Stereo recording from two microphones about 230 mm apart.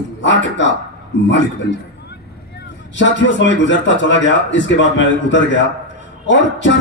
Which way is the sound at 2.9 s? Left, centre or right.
Left.